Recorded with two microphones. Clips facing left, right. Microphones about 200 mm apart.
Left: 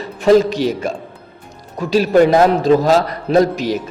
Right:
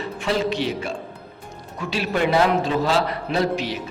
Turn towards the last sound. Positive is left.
turn(degrees=40)  # may be behind; listen again after turning